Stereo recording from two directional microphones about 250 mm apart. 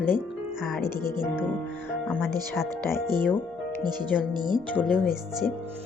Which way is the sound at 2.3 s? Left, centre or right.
Centre.